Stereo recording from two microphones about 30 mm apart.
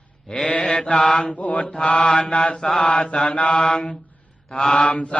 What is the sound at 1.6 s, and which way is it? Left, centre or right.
Mantra, left.